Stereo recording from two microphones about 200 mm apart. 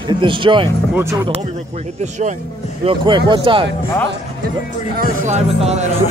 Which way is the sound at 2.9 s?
25° right (ahead or behind).